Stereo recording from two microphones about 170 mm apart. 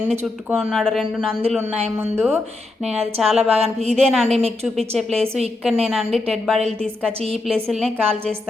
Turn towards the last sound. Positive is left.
turn(degrees=0)  # may be behind; listen again after turning